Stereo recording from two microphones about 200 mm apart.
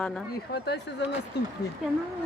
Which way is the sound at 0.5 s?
55° left (ahead or behind).